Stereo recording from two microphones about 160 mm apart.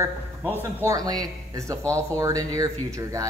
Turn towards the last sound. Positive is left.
turn(degrees=-20)  # may be behind; listen again after turning